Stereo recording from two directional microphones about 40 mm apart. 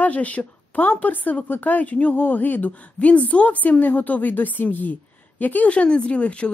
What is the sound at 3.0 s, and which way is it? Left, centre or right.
Speech, left.